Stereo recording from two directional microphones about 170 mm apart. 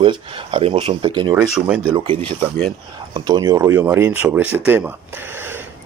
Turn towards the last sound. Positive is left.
turn(degrees=-15)  # may be behind; listen again after turning